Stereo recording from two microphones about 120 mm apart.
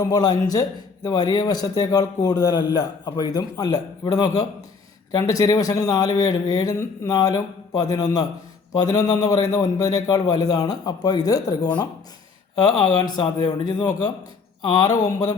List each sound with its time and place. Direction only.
0.0 s a man's voice: 35° left (ahead or behind)